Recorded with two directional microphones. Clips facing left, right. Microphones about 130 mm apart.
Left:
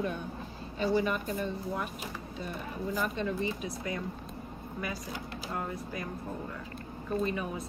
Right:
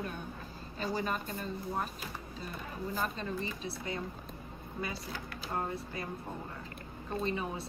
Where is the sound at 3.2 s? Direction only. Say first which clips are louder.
Left 5 dB; 30° right (ahead or behind).